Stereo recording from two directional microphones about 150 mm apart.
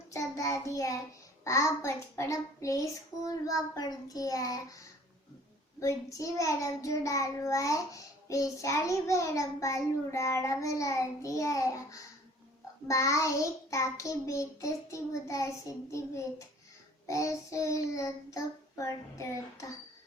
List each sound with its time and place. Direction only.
0.1 s child singing: 20° left (ahead or behind)
1.5 s a child's voice: 20° left (ahead or behind)
5.8 s a child's voice: 20° left (ahead or behind)